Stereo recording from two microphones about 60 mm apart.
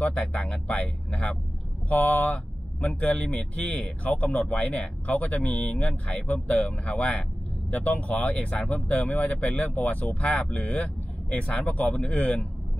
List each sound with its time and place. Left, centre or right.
0.0 s speech: left